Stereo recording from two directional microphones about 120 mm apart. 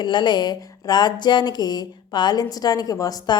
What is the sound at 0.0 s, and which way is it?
Speech, 40° left (ahead or behind).